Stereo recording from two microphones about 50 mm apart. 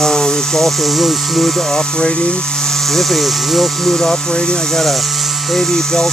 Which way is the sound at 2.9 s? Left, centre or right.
Centre.